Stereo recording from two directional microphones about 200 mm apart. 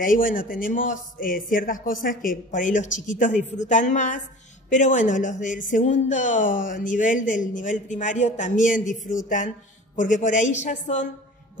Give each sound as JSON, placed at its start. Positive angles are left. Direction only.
{"t": 0.0, "sound": "speech", "side_deg": 45}